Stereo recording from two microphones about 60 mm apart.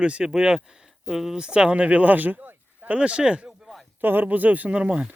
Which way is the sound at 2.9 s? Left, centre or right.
Centre.